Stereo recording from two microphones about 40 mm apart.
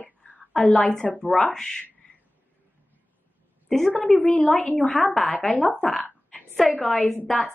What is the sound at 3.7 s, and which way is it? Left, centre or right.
A woman's voice, centre.